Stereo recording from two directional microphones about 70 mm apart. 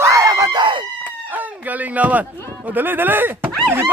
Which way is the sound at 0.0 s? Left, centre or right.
Right.